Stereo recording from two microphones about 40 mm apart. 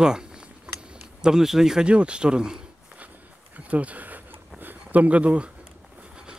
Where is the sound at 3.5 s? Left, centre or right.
Right.